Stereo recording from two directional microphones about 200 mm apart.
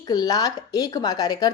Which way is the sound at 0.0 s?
20° left (ahead or behind).